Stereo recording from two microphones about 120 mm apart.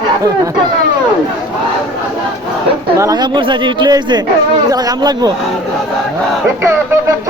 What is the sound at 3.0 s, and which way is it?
Speech, 35° right (ahead or behind).